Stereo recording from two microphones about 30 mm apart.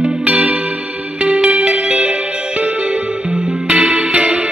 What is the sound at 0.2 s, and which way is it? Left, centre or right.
Music, right.